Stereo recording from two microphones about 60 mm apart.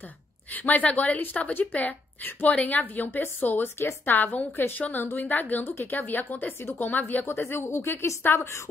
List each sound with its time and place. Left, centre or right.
0.5 s a woman's voice: left
7.2 s a woman's voice: left